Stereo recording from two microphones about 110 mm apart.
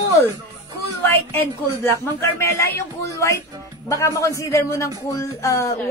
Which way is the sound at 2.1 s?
25° left (ahead or behind).